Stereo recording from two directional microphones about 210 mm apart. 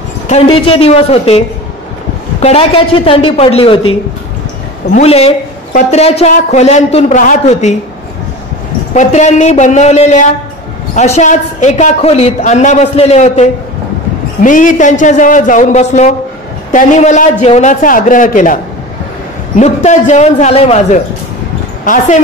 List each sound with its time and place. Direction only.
0.3 s a man's voice: 25° left (ahead or behind)
2.4 s a man's voice: 30° left (ahead or behind)
4.9 s speech: 30° left (ahead or behind)
8.9 s speech: 35° left (ahead or behind)